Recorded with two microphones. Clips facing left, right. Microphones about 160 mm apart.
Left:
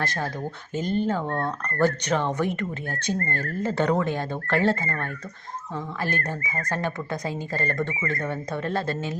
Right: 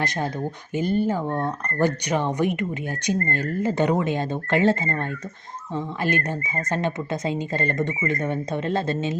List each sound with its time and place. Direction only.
0.0 s speech: 20° right (ahead or behind)